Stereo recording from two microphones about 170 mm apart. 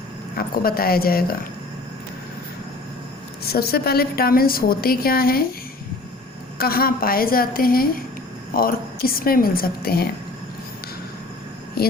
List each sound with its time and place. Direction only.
0.3 s a woman's voice: 60° left (ahead or behind)
3.4 s a woman's voice: 65° left (ahead or behind)
6.6 s a woman's voice: 60° left (ahead or behind)
11.8 s a sound: 60° left (ahead or behind)